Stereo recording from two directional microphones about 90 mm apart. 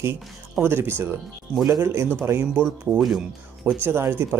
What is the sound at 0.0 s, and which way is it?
Speech, 30° right (ahead or behind).